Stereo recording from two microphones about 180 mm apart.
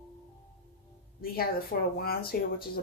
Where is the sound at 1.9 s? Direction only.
60° left (ahead or behind).